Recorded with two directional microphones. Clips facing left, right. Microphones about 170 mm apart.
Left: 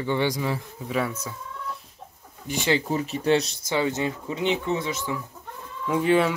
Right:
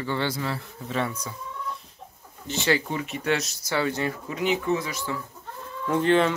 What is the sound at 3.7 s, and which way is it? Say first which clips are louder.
Speech: left 1 dB; 20° left (ahead or behind).